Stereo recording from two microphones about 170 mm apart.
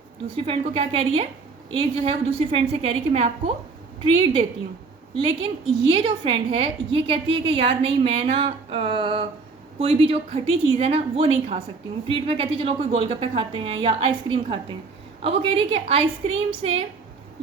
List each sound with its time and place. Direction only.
0.3 s a woman's voice: 35° right (ahead or behind)
5.9 s a woman's voice: 35° right (ahead or behind)